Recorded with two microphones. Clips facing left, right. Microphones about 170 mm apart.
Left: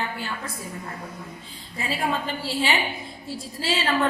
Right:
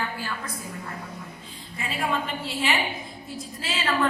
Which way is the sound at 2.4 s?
35° left (ahead or behind).